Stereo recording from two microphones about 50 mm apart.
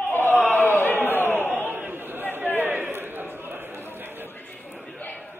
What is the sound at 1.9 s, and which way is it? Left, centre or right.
Chatter, right.